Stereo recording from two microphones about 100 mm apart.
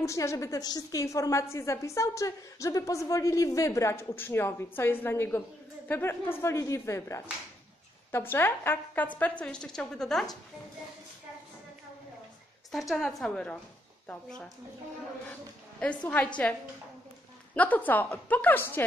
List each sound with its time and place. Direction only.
0.0 s a woman's voice: 30° left (ahead or behind); by 10.2 s 5° left (ahead or behind)
12.9 s a woman's voice: 5° left (ahead or behind)
15.8 s a woman's voice: 10° left (ahead or behind)
17.6 s a woman's voice: 15° left (ahead or behind)